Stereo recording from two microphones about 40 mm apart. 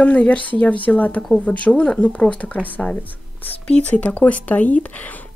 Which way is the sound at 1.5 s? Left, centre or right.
Left.